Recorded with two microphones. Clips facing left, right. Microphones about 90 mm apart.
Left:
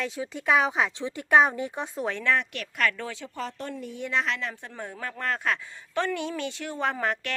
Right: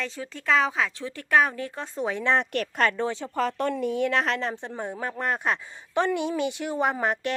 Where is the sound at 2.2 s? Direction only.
30° right (ahead or behind).